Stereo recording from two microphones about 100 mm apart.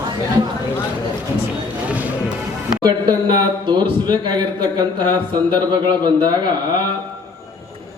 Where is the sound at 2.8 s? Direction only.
45° right (ahead or behind).